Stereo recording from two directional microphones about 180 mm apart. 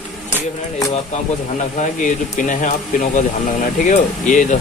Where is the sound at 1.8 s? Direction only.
45° left (ahead or behind).